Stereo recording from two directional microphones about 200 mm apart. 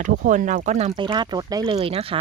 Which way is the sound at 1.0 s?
25° right (ahead or behind).